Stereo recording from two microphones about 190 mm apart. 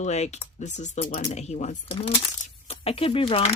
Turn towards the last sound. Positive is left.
turn(degrees=30)  # may be behind; listen again after turning